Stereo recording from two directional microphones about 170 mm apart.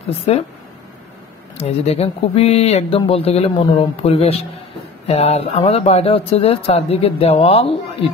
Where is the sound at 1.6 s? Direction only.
35° left (ahead or behind).